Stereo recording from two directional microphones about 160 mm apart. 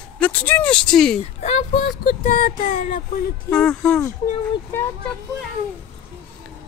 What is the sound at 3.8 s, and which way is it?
Speech, 15° left (ahead or behind).